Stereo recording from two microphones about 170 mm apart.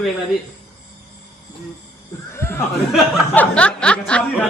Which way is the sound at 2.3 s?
15° left (ahead or behind).